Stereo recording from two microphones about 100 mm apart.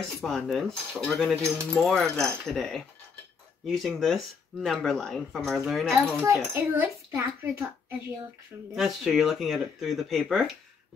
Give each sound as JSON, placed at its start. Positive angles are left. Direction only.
{"t": 0.1, "sound": "speech", "side_deg": 5}
{"t": 1.3, "sound": "a child's voice", "side_deg": -25}
{"t": 1.7, "sound": "speech", "side_deg": 0}
{"t": 6.5, "sound": "a child's voice", "side_deg": -25}
{"t": 8.7, "sound": "speech", "side_deg": 0}